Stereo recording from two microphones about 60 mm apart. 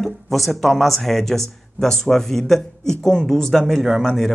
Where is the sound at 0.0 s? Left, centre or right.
Centre.